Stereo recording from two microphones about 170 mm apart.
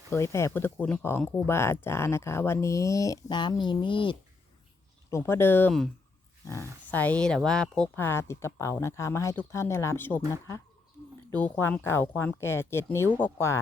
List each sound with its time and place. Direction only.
0.1 s speech: 15° left (ahead or behind)
5.1 s speech: 15° left (ahead or behind)